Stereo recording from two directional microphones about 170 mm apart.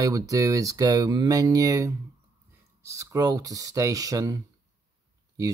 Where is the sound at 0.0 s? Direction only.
20° right (ahead or behind).